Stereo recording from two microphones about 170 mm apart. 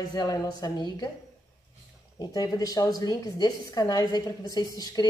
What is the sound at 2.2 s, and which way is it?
Speech, 20° left (ahead or behind).